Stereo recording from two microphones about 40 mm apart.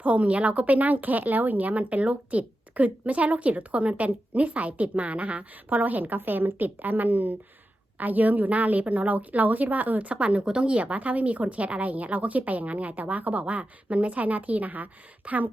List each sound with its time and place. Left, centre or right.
0.0 s a woman's voice: right